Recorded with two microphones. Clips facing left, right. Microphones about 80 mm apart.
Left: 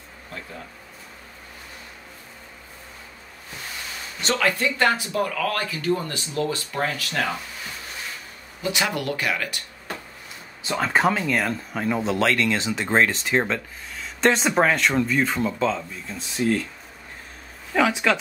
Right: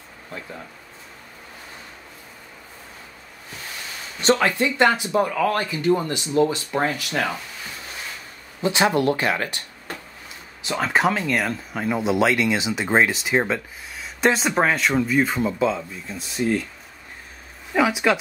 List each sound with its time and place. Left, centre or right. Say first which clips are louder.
4.2 s speech: right 4 dB; right
8.6 s speech: right 6 dB; right
10.7 s speech: even; centre
17.7 s speech: right 1 dB; centre